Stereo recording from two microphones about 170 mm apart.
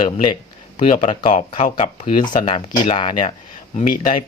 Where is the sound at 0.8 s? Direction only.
35° left (ahead or behind).